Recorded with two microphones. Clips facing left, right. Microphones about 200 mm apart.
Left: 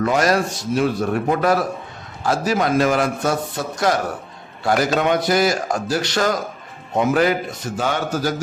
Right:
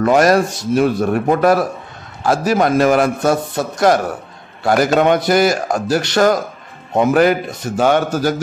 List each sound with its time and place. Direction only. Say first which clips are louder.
0.0 s a man's voice: right 6 dB; 50° right (ahead or behind)
4.6 s a man's voice: right 5 dB; 50° right (ahead or behind)